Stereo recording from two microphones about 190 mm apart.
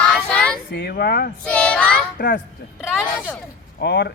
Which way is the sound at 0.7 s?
55° left (ahead or behind).